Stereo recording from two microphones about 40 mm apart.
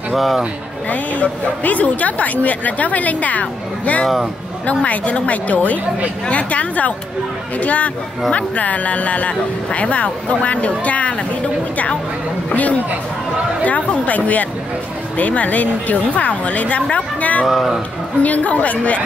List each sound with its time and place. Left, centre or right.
0.1 s speech: centre
0.8 s a woman's voice: left
12.4 s a woman's voice: left
17.5 s speech: centre
18.2 s a woman's voice: left